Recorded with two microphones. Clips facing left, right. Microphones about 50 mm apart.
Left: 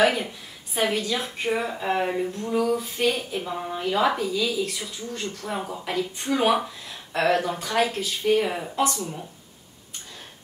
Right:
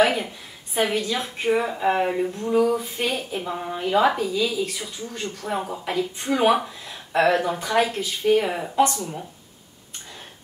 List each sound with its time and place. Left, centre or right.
0.0 s a woman's voice: centre
2.7 s a sound: centre
3.3 s a woman's voice: centre